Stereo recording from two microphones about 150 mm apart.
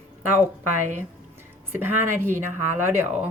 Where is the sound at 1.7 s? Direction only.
15° right (ahead or behind).